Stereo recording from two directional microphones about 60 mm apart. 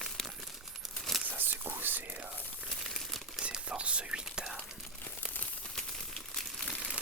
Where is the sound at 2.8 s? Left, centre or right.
Centre.